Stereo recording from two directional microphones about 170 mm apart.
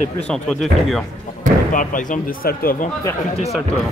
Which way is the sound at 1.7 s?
50° left (ahead or behind).